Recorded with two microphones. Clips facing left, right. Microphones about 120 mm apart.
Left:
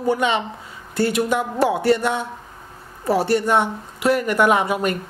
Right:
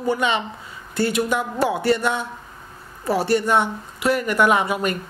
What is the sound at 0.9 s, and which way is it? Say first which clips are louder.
Speech: left 1 dB; 50° left (ahead or behind).